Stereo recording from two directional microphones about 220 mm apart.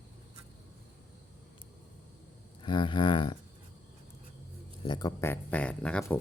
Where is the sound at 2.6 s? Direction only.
20° left (ahead or behind).